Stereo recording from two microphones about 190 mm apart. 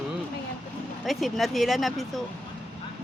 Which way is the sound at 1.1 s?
Centre (ahead or behind).